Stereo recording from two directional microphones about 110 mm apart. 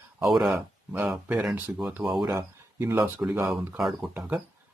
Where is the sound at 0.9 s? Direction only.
20° right (ahead or behind).